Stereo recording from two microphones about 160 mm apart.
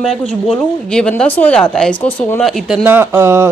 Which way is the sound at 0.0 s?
5° left (ahead or behind).